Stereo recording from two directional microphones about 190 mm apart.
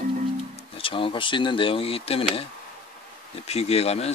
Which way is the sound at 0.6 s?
30° left (ahead or behind).